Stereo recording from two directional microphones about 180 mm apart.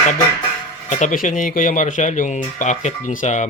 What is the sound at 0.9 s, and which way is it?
Speech, 45° left (ahead or behind).